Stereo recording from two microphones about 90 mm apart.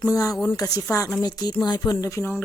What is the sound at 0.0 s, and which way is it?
Speech, 35° left (ahead or behind).